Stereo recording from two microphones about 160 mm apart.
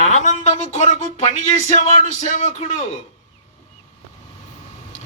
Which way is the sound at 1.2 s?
50° left (ahead or behind).